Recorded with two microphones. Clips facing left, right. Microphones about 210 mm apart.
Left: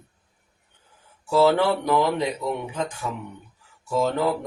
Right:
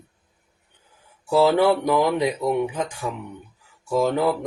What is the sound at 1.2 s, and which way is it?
Speech, 15° right (ahead or behind).